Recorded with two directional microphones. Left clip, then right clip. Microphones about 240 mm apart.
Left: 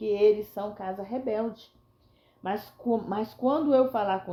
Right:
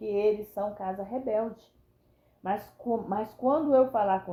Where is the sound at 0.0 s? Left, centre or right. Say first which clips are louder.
Left 4 dB; left.